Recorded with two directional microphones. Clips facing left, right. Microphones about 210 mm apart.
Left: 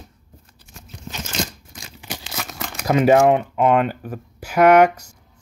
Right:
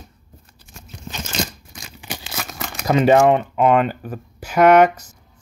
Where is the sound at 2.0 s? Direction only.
15° right (ahead or behind).